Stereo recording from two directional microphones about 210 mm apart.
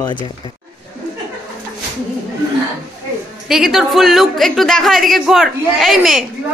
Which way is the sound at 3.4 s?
Centre (ahead or behind).